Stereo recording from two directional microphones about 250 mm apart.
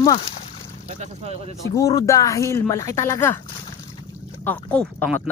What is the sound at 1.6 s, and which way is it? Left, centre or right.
Speech, centre.